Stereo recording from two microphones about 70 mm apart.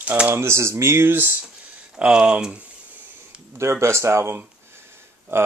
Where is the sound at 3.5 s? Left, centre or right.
Right.